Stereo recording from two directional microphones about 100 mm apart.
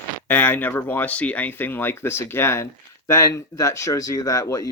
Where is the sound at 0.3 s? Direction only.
15° left (ahead or behind).